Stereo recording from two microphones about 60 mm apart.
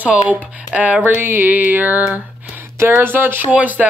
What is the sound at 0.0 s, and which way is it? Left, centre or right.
Speech, right.